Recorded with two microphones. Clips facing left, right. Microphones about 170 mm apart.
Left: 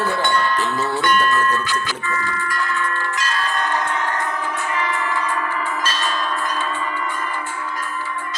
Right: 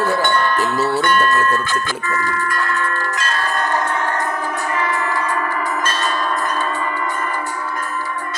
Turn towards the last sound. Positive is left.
turn(degrees=-50)  # may be behind; listen again after turning